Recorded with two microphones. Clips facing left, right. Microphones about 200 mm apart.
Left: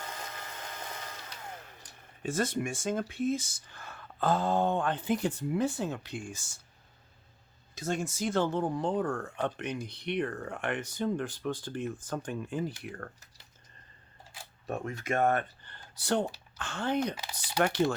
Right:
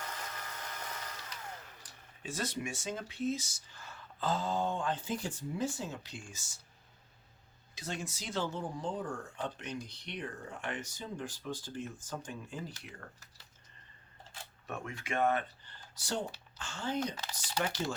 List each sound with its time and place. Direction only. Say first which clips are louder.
0.0 s vehicle: left 2 dB; 25° left (ahead or behind)
1.8 s speech: left 10 dB; 50° left (ahead or behind)
7.8 s speech: left 9 dB; 50° left (ahead or behind)
14.7 s speech: left 6 dB; 40° left (ahead or behind); by 17.2 s 60° left (ahead or behind)
17.2 s speech: left 1 dB; 10° left (ahead or behind)
17.6 s speech: left 8 dB; 60° left (ahead or behind)